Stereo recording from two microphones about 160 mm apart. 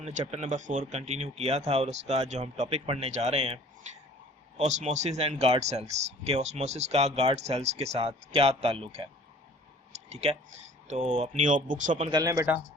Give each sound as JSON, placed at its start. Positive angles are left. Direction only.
{"t": 0.0, "sound": "speech", "side_deg": -45}
{"t": 9.9, "sound": "clicking", "side_deg": -45}
{"t": 10.8, "sound": "speech", "side_deg": -45}
{"t": 12.1, "sound": "speech", "side_deg": -20}